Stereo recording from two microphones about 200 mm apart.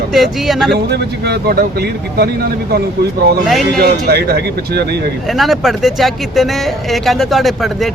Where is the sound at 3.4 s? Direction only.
Centre (ahead or behind).